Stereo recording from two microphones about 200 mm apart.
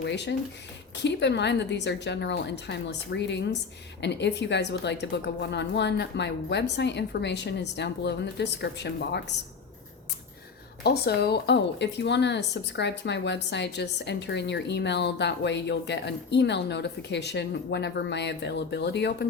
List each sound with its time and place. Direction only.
0.0 s speech: 60° left (ahead or behind)
10.8 s speech: 55° left (ahead or behind)